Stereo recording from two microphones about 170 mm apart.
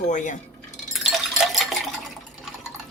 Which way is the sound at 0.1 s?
45° left (ahead or behind).